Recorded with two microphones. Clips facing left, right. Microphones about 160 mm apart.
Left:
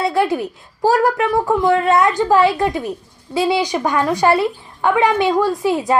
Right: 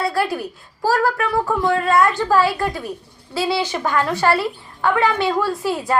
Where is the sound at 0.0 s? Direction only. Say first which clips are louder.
Left 4 dB; 20° left (ahead or behind).